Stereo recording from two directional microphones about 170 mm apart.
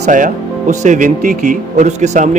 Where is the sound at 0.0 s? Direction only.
50° right (ahead or behind).